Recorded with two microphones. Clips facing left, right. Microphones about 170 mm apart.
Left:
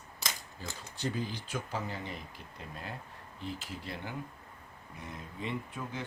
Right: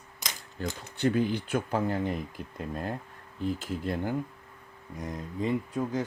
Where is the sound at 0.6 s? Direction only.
65° right (ahead or behind).